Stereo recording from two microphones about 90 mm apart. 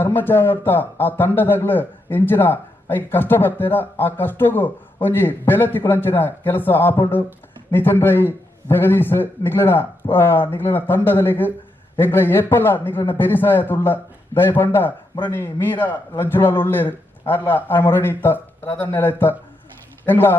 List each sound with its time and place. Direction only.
0.0 s a man's voice: 25° left (ahead or behind)